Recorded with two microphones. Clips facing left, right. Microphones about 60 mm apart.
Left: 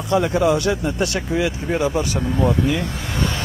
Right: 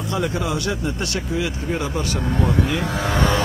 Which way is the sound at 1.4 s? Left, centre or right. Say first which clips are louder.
Left 4 dB; centre.